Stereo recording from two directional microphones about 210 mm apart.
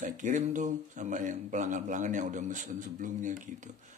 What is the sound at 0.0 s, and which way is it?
Speech, 35° right (ahead or behind).